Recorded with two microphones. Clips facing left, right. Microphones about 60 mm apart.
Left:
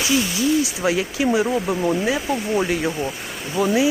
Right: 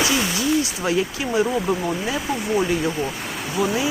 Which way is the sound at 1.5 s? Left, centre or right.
Centre.